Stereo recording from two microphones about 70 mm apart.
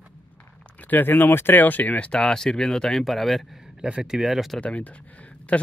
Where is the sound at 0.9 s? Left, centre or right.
Left; by 3.4 s centre.